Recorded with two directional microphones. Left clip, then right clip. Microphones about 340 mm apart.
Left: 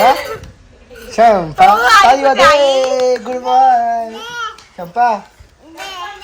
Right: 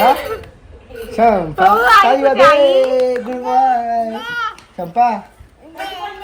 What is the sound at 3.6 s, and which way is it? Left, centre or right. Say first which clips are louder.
A child's voice: left 3 dB; centre.